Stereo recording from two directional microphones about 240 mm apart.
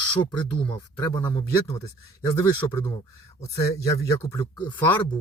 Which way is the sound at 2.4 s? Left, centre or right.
Centre.